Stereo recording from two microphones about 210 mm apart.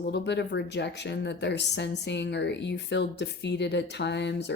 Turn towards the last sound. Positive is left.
turn(degrees=55)  # may be behind; listen again after turning